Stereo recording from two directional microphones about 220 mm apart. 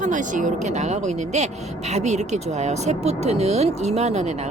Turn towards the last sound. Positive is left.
turn(degrees=-30)  # may be behind; listen again after turning